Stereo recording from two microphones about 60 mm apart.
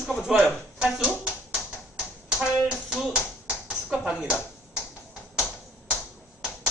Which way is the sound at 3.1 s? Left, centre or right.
Centre.